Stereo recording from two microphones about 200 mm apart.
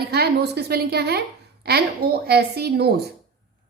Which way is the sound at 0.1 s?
55° right (ahead or behind).